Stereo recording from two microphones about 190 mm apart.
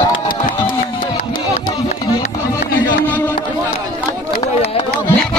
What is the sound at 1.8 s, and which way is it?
Music, 40° left (ahead or behind).